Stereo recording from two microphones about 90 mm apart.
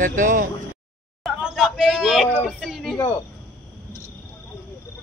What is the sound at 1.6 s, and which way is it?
Child singing, 5° right (ahead or behind).